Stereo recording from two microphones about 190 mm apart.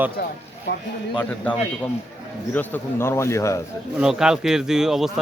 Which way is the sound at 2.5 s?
10° left (ahead or behind).